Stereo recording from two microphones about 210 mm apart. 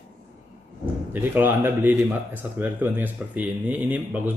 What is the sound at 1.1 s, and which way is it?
Speech, 10° right (ahead or behind).